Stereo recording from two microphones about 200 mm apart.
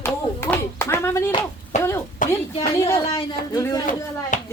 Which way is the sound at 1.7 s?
35° left (ahead or behind).